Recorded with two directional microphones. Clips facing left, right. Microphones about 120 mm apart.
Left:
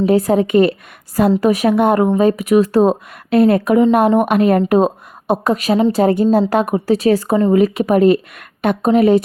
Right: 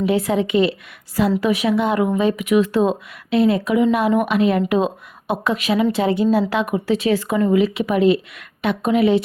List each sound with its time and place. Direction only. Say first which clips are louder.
0.0 s speech: left 5 dB; 40° left (ahead or behind)